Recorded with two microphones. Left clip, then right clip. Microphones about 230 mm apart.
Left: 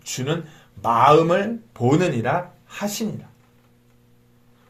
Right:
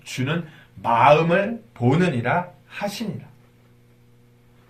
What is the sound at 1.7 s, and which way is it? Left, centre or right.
Speech, left.